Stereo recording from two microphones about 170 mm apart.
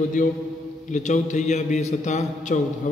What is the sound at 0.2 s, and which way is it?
A man's voice, 50° left (ahead or behind).